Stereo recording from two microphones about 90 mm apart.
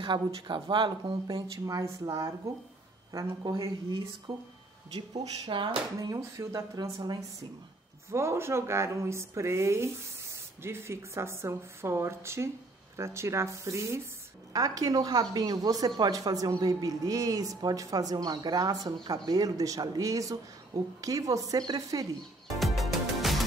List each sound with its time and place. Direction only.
0.0 s speech: 60° right (ahead or behind)
1.7 s speech: 35° right (ahead or behind)
4.3 s speech: 65° right (ahead or behind)
5.9 s speech: 35° right (ahead or behind)
8.1 s speech: 30° right (ahead or behind); by 22.0 s 45° right (ahead or behind)
22.6 s music: centre (ahead or behind)